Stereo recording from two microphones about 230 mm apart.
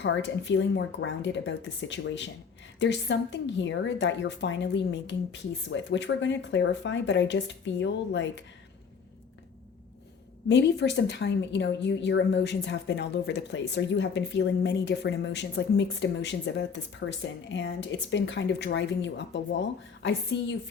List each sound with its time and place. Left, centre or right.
0.0 s a woman's voice: left
10.5 s a woman's voice: left